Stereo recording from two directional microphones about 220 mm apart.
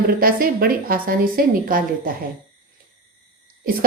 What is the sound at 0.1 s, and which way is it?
Speech, 40° right (ahead or behind).